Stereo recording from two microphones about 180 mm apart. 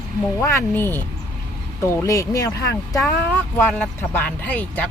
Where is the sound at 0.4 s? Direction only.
10° left (ahead or behind).